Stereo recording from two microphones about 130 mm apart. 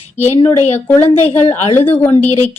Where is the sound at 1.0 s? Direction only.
50° left (ahead or behind).